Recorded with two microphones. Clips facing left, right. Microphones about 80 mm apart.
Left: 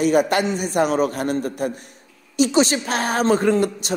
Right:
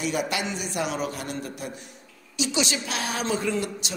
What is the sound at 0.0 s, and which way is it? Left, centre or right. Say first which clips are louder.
A woman's voice: left 10 dB; left.